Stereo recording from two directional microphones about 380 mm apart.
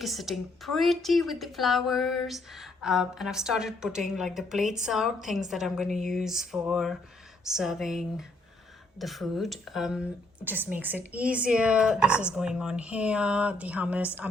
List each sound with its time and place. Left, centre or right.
0.0 s a woman's voice: centre